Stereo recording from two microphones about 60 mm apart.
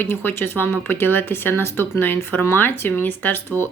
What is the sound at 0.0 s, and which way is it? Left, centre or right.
Speech, left.